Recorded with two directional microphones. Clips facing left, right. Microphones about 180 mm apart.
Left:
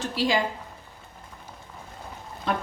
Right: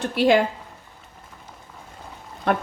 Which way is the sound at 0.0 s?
60° right (ahead or behind).